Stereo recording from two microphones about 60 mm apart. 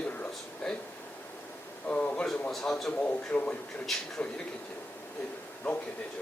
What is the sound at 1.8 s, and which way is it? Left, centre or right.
Speech, left.